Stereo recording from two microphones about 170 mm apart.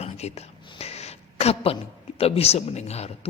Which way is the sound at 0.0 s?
40° left (ahead or behind).